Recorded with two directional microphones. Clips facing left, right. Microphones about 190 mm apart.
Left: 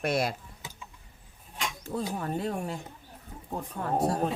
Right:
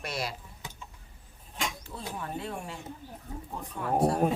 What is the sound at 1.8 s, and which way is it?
Speech, 45° left (ahead or behind).